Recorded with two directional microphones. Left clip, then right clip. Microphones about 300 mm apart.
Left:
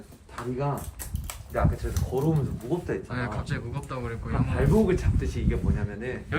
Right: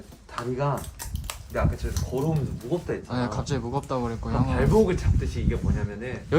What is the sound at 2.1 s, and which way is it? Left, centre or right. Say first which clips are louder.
Speech: even; centre.